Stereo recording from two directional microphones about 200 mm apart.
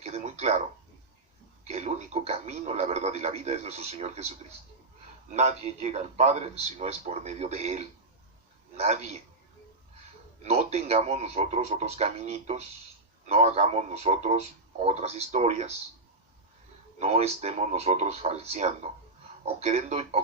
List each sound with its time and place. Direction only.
0.0 s a sound: 30° right (ahead or behind)
1.6 s a man's voice: 35° right (ahead or behind)
5.3 s a man's voice: 35° right (ahead or behind)
10.4 s a man's voice: 30° right (ahead or behind)
17.0 s a man's voice: 30° right (ahead or behind)